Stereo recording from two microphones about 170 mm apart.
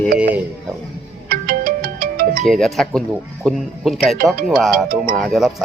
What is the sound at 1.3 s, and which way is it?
Music, 60° right (ahead or behind).